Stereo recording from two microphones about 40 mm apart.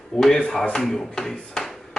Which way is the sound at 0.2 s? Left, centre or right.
Centre.